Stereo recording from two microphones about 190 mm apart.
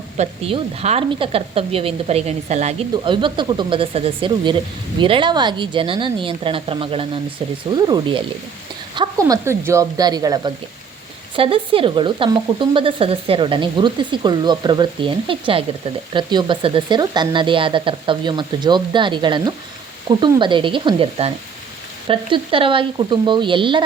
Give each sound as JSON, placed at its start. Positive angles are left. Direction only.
{"t": 0.2, "sound": "a woman's voice", "side_deg": -30}
{"t": 2.9, "sound": "speech", "side_deg": -25}
{"t": 9.0, "sound": "speech", "side_deg": -20}